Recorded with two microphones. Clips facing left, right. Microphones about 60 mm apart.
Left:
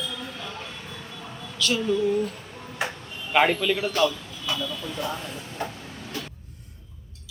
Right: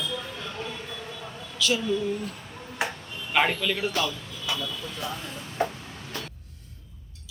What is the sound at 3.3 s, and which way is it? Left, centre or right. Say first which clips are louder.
Speech: left 3 dB; centre.